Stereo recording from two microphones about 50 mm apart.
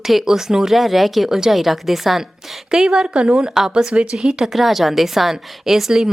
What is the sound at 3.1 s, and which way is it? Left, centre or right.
Speech, right.